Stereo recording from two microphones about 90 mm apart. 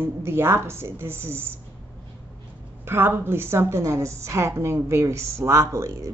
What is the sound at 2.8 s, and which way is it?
A woman's voice, 25° right (ahead or behind).